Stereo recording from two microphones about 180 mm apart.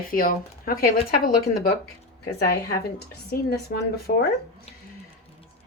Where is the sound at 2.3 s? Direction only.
65° left (ahead or behind).